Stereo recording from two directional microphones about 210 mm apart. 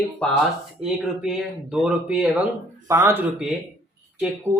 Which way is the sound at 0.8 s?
Centre (ahead or behind).